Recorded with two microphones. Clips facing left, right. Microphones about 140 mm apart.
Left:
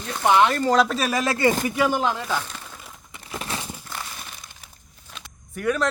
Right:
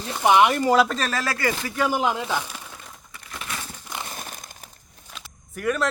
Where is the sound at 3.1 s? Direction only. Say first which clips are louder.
Left 4 dB; 30° left (ahead or behind).